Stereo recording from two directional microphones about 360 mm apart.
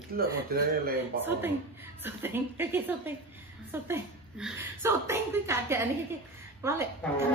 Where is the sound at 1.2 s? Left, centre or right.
Centre.